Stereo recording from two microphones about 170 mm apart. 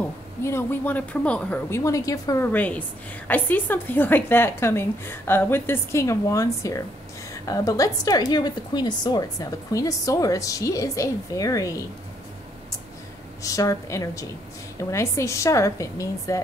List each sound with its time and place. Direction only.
0.4 s a woman's voice: 15° left (ahead or behind)
13.4 s a woman's voice: 20° left (ahead or behind)